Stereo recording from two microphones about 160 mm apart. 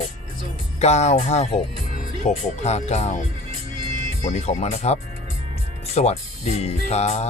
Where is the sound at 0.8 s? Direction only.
45° left (ahead or behind).